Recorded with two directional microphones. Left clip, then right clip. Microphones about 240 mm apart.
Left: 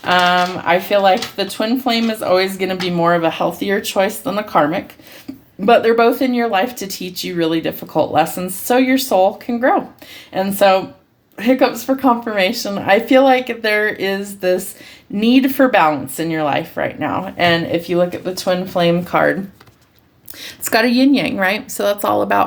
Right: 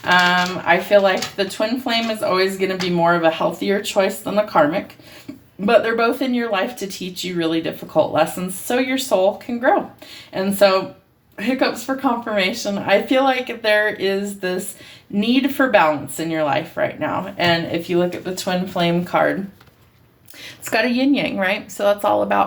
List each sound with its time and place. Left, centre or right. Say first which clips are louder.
0.0 s speech: left 2 dB; left
11.9 s speech: left 5 dB; left
20.4 s a woman's voice: left 4 dB; left